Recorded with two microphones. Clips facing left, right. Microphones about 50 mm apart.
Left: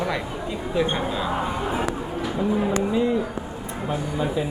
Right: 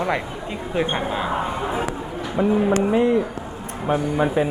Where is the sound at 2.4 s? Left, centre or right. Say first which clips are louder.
Right 5 dB; right.